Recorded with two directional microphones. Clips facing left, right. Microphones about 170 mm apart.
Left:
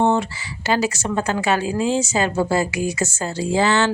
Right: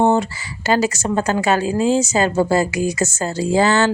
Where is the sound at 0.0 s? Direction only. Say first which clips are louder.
Right 3 dB; 40° right (ahead or behind).